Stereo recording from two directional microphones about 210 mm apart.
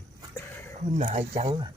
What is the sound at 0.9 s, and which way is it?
Speech, 30° right (ahead or behind).